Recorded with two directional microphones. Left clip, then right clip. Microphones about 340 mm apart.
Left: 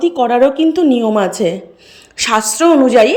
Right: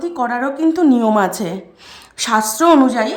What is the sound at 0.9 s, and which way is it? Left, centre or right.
Speech, centre.